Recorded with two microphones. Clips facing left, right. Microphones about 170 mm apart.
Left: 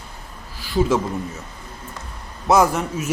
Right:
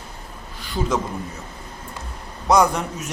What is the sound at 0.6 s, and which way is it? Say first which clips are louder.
Speech: left 4 dB; 5° left (ahead or behind).